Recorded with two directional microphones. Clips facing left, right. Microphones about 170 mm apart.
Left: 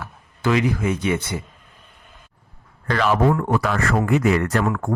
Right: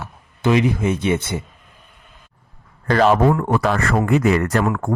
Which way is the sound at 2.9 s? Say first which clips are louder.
Right 4 dB; 40° right (ahead or behind).